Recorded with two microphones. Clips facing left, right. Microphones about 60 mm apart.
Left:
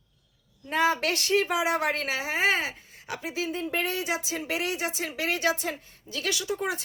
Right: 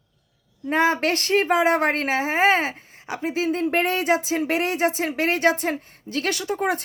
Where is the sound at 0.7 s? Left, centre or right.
Right.